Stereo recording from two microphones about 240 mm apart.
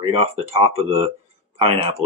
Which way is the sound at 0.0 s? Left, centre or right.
Right.